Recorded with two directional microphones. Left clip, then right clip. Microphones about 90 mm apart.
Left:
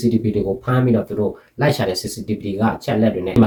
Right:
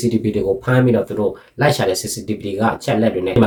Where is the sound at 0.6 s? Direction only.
20° right (ahead or behind).